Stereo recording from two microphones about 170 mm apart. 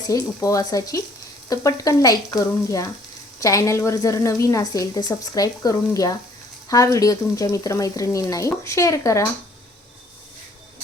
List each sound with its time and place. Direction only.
0.1 s a woman's voice: 20° left (ahead or behind)